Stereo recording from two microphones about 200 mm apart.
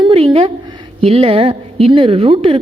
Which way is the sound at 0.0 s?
25° right (ahead or behind).